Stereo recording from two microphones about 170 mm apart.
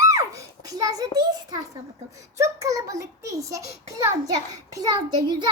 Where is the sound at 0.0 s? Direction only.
20° right (ahead or behind).